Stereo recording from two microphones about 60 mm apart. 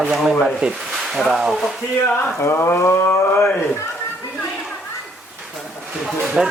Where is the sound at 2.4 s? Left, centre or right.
Left.